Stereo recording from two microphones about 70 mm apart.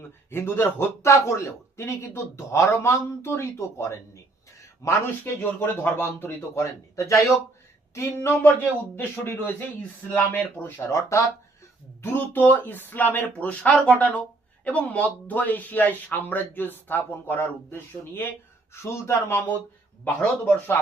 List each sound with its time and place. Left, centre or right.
0.3 s a man's voice: left
6.6 s a man's voice: left
10.2 s speech: left
10.8 s speech: left
12.1 s a man's voice: left
20.1 s speech: left